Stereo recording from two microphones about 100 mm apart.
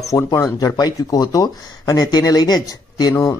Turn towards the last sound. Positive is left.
turn(degrees=40)  # may be behind; listen again after turning